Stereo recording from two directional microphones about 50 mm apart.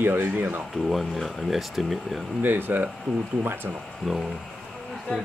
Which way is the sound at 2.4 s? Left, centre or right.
Right.